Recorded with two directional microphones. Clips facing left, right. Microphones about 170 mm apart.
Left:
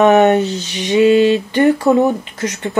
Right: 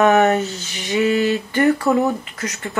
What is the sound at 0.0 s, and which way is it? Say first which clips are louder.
Speech: left 4 dB; 25° left (ahead or behind).